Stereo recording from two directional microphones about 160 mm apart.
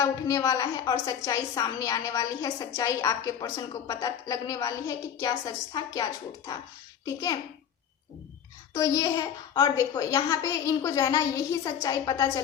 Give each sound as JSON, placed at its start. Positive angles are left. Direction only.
{"t": 0.0, "sound": "a woman's voice", "side_deg": 20}
{"t": 8.7, "sound": "a woman's voice", "side_deg": 20}